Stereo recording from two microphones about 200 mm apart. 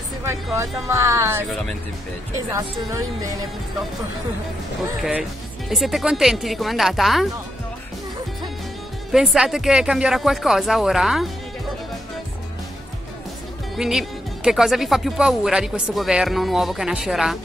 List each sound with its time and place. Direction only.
0.6 s speech: 15° right (ahead or behind)
2.5 s speech: 15° right (ahead or behind)
5.7 s speech: centre (ahead or behind)
9.1 s speech: centre (ahead or behind)
13.7 s speech: centre (ahead or behind)